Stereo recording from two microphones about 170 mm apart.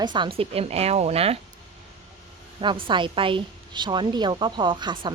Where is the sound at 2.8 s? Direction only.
30° right (ahead or behind).